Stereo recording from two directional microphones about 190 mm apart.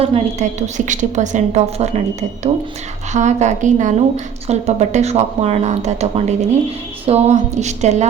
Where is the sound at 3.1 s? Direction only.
40° right (ahead or behind).